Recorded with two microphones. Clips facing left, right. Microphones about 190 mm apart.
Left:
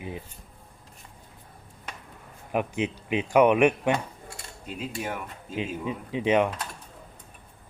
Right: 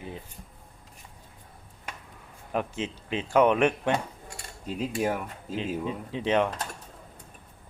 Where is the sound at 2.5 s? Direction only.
15° left (ahead or behind).